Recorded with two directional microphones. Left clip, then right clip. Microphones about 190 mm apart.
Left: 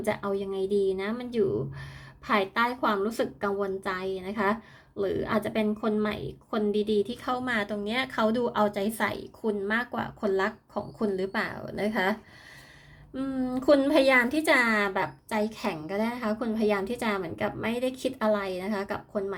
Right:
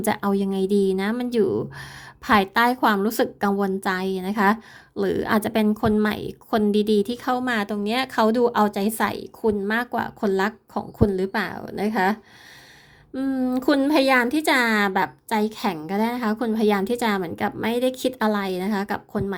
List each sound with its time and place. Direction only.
0.0 s a woman's voice: 50° right (ahead or behind); by 12.1 s 30° right (ahead or behind)
13.1 s a woman's voice: 30° right (ahead or behind)